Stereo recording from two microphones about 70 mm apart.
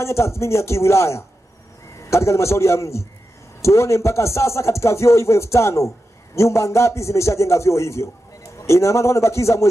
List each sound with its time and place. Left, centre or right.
0.0 s a man's voice: left